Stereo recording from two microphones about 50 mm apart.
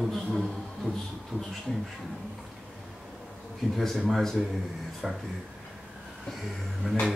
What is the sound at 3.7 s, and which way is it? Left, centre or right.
Speech, centre.